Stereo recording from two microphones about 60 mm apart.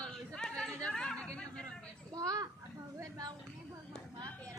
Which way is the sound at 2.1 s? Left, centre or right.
Right.